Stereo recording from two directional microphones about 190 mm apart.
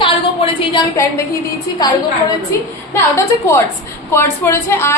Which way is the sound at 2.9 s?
15° left (ahead or behind).